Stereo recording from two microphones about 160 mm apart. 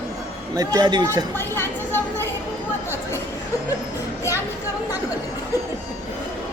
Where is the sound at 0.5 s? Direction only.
25° right (ahead or behind).